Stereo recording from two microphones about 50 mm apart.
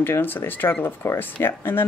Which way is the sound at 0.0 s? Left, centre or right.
Left.